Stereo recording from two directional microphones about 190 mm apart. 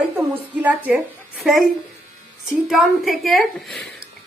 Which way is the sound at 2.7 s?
Centre (ahead or behind).